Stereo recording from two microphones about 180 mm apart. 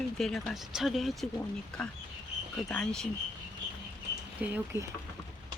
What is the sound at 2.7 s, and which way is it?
Speech, 5° left (ahead or behind).